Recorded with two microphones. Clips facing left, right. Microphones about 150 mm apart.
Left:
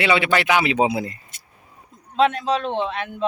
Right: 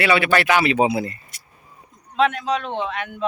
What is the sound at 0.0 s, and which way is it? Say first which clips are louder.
Speech: right 1 dB; 20° left (ahead or behind).